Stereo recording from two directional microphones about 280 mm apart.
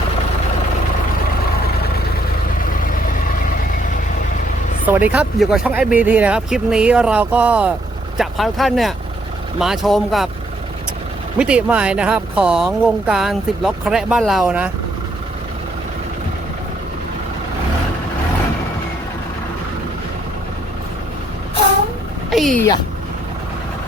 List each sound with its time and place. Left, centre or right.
2.6 s vehicle: left
4.9 s speech: centre
11.3 s speech: centre
22.3 s a sound: centre